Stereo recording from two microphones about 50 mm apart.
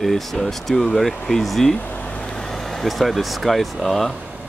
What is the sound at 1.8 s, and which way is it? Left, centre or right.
Vehicle, left.